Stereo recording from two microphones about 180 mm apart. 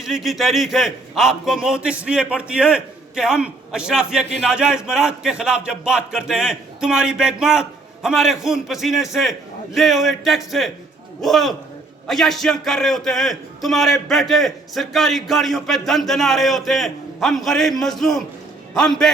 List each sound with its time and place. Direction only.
0.0 s a man's voice: centre (ahead or behind)